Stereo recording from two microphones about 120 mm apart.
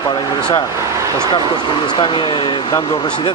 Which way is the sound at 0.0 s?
35° left (ahead or behind).